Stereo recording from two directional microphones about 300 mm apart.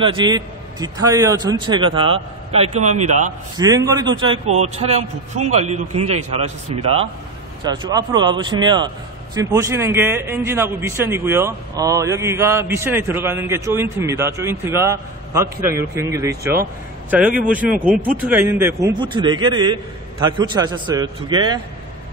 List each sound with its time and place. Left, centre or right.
0.0 s a man's voice: centre
3.5 s a man's voice: centre